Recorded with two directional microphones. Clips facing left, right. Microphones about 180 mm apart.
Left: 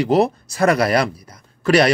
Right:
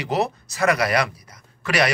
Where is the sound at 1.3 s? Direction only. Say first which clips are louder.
Left 9 dB; 35° left (ahead or behind).